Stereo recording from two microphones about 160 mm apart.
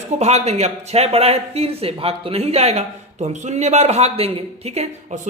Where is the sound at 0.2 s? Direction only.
45° right (ahead or behind).